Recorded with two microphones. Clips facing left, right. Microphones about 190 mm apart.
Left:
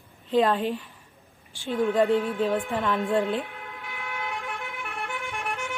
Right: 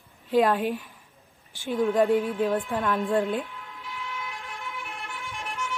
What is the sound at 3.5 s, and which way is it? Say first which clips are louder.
Vehicle: left 2 dB; 60° left (ahead or behind).